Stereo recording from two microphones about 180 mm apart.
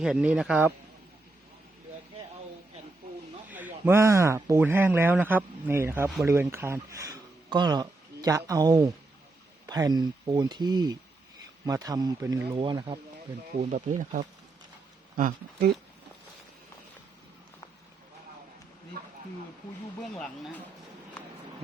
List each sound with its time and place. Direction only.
0.0 s speech: 5° right (ahead or behind)
3.5 s speech: 10° right (ahead or behind); by 13.0 s 25° right (ahead or behind)
13.6 s speech: 45° right (ahead or behind)
19.0 s a sound: 60° right (ahead or behind)
20.1 s speech: 5° left (ahead or behind)